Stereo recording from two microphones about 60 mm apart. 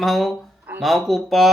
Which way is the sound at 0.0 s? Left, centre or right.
Centre.